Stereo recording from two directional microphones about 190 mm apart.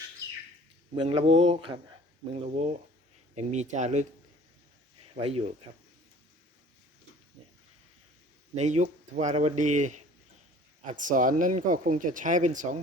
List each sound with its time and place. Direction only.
0.9 s speech: 30° right (ahead or behind)
5.0 s speech: 30° right (ahead or behind)
8.5 s speech: 35° right (ahead or behind)